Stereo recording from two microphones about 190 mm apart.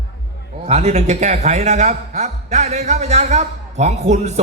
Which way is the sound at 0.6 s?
35° right (ahead or behind).